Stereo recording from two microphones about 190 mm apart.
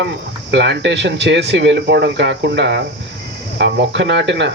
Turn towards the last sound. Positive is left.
turn(degrees=-70)  # may be behind; listen again after turning